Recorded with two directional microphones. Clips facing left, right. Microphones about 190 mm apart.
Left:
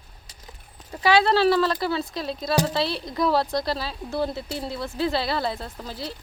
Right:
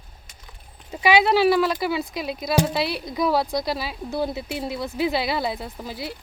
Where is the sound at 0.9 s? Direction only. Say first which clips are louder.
Right 1 dB; 15° right (ahead or behind).